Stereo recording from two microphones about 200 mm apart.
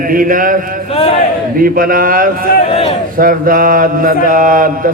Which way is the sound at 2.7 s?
30° left (ahead or behind).